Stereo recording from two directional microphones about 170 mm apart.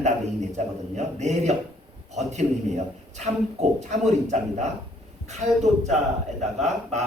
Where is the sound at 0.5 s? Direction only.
40° right (ahead or behind).